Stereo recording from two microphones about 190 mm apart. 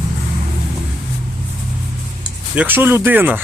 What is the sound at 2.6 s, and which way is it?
Speech, 10° right (ahead or behind).